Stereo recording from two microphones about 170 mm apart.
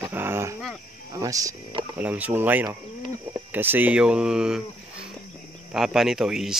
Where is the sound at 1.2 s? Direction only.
20° right (ahead or behind).